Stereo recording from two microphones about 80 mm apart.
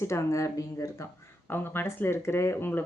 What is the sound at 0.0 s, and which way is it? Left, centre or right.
Speech, left.